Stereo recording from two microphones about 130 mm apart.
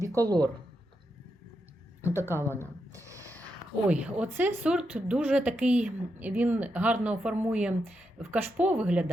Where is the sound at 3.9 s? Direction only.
10° right (ahead or behind).